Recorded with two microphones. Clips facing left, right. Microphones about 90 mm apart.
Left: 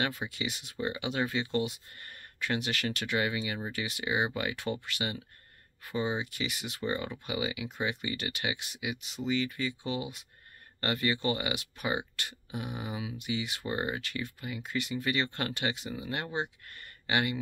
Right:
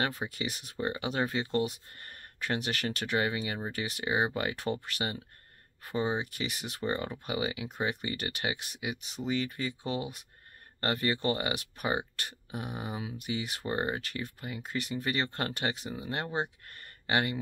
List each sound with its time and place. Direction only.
0.0 s speech: 40° right (ahead or behind)